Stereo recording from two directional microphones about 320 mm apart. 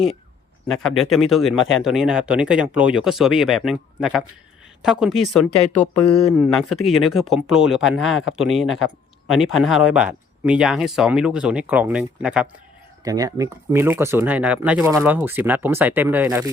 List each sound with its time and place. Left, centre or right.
0.7 s speech: centre